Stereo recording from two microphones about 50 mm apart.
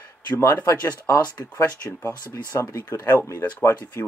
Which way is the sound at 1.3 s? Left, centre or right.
Left.